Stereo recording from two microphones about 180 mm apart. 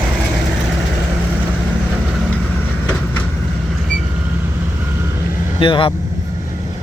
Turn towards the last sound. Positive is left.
turn(degrees=30)  # may be behind; listen again after turning